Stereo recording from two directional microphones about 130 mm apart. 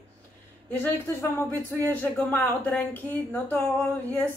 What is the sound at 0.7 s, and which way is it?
A woman's voice, 15° left (ahead or behind).